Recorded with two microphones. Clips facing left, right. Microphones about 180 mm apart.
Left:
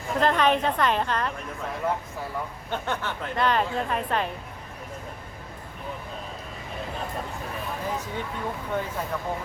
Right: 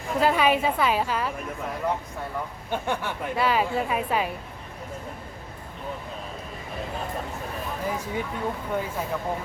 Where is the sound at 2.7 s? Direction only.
10° right (ahead or behind).